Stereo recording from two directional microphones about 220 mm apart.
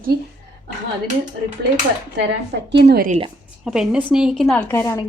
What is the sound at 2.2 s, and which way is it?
A woman's voice, 50° right (ahead or behind).